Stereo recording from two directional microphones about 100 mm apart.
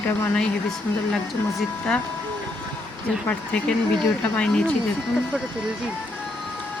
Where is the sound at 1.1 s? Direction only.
5° left (ahead or behind).